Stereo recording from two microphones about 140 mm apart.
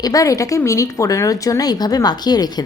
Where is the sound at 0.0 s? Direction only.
25° left (ahead or behind).